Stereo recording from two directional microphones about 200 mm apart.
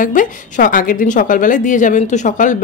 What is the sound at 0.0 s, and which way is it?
A woman's voice, 40° left (ahead or behind).